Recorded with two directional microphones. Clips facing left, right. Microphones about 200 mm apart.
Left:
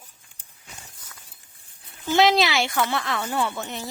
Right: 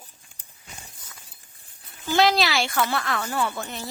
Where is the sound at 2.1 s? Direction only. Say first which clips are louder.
Left 2 dB; 20° left (ahead or behind).